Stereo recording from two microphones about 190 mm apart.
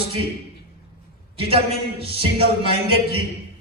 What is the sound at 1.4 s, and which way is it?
A man's voice, 30° right (ahead or behind).